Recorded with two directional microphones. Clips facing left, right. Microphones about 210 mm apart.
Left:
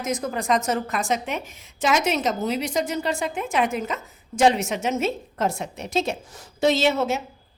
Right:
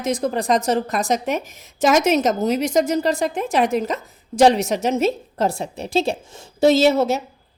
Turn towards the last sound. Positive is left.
turn(degrees=-35)  # may be behind; listen again after turning